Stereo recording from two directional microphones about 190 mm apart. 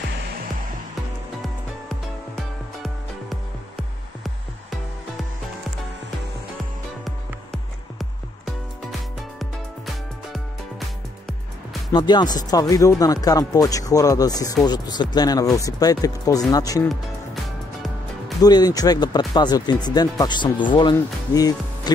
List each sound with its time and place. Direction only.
1.9 s music: centre (ahead or behind)
9.4 s music: centre (ahead or behind)
11.9 s speech: 25° left (ahead or behind)
18.4 s speech: 20° left (ahead or behind)